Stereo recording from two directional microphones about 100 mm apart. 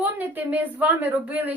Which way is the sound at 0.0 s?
15° right (ahead or behind).